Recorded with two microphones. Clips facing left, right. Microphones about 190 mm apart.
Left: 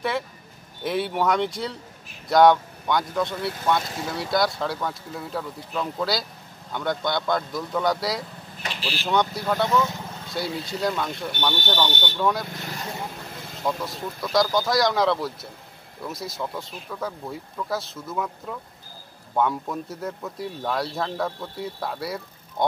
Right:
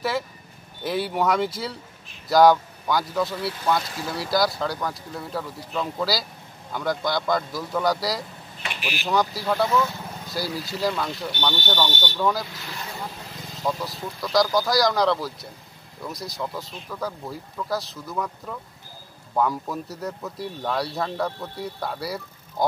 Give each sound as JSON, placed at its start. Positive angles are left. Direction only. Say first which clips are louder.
{"t": 0.8, "sound": "speech", "louder": "even", "side_deg": 0}
{"t": 8.6, "sound": "speech", "louder": "even", "side_deg": -15}
{"t": 9.0, "sound": "speech", "louder": "even", "side_deg": 0}
{"t": 12.4, "sound": "speech", "louder": "left 4 dB", "side_deg": 50}
{"t": 13.7, "sound": "speech", "louder": "even", "side_deg": 0}